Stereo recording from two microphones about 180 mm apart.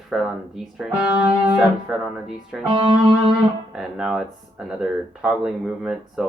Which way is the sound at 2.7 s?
30° right (ahead or behind).